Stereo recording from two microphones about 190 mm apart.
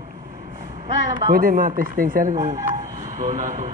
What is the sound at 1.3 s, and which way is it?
Speech, 50° right (ahead or behind).